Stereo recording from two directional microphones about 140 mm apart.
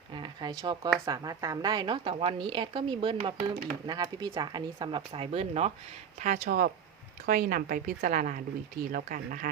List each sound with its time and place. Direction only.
0.1 s a sound: 35° right (ahead or behind)
0.9 s a woman's voice: 25° right (ahead or behind); by 5.7 s 45° right (ahead or behind)
6.1 s speech: 65° right (ahead or behind); by 9.5 s 80° right